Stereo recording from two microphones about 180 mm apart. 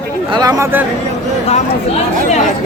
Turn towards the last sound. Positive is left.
turn(degrees=-15)  # may be behind; listen again after turning